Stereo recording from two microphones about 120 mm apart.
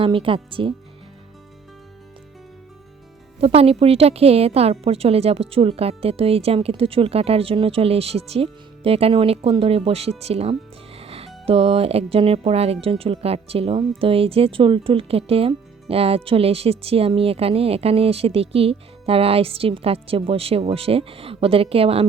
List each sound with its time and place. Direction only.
0.0 s speech: 50° right (ahead or behind)
3.4 s a woman's voice: 55° right (ahead or behind)